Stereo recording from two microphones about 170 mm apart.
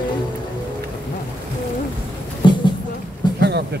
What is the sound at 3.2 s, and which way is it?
Vehicle, 25° left (ahead or behind).